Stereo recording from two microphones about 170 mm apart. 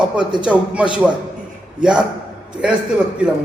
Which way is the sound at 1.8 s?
5° right (ahead or behind).